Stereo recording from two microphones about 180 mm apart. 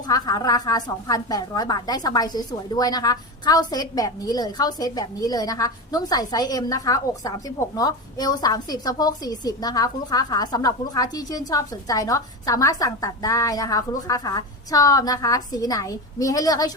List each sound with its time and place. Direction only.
0.1 s a woman's voice: 20° left (ahead or behind)